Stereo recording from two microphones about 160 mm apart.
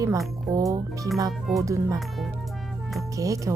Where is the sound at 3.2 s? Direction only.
20° right (ahead or behind).